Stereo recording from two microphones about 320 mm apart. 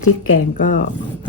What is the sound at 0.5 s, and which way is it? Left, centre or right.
Speech, left.